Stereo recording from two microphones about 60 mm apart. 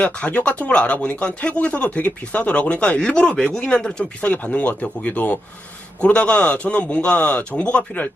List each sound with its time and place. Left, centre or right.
0.0 s speech: left
4.2 s speech: left